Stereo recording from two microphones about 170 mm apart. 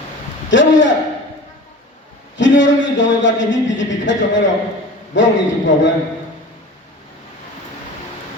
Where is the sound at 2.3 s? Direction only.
90° left.